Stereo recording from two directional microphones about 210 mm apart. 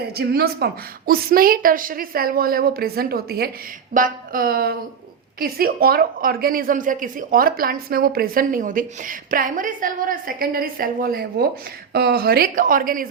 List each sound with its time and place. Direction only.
0.1 s a woman's voice: 50° right (ahead or behind)